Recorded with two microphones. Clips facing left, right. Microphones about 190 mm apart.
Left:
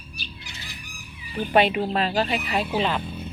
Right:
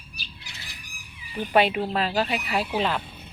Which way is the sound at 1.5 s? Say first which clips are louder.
Left 1 dB; 5° right (ahead or behind).